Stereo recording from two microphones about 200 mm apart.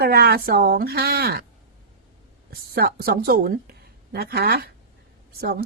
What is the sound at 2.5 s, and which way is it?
A woman's voice, 50° right (ahead or behind).